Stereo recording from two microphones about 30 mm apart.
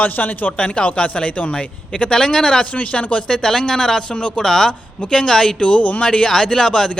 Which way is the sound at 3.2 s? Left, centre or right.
Centre.